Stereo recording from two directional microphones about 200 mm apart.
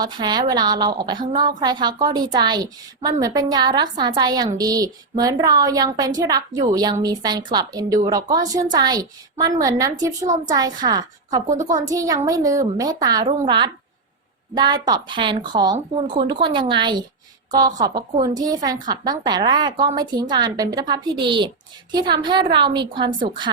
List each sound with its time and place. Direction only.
0.0 s a woman's voice: 20° right (ahead or behind)
14.5 s a woman's voice: 20° right (ahead or behind)